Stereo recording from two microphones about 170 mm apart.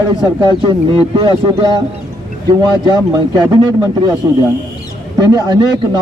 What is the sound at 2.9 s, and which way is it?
Speech, 25° right (ahead or behind).